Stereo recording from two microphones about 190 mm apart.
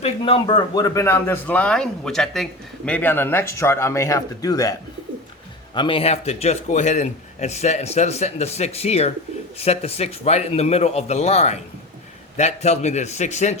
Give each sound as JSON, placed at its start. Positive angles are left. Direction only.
{"t": 0.0, "sound": "speech", "side_deg": 30}
{"t": 5.7, "sound": "a man's voice", "side_deg": 25}